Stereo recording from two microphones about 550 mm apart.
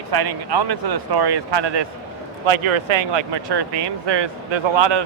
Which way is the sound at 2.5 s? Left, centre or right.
Right.